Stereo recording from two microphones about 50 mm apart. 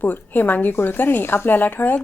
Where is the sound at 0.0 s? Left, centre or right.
Left.